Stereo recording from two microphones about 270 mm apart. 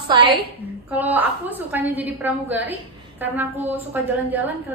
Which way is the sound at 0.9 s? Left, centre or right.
Centre.